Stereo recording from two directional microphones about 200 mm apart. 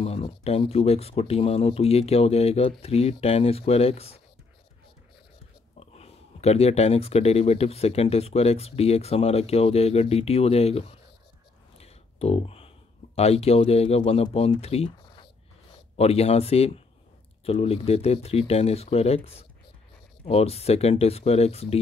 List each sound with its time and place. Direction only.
0.0 s speech: 30° left (ahead or behind)
5.8 s speech: 30° left (ahead or behind)